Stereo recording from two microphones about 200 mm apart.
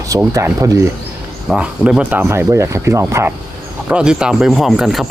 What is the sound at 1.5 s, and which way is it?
Speech, 5° right (ahead or behind).